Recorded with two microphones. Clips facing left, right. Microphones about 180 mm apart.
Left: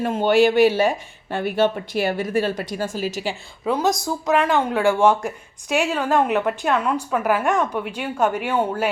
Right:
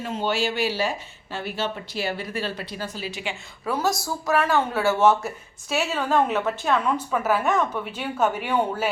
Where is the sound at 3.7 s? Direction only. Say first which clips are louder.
Left 4 dB; 20° left (ahead or behind).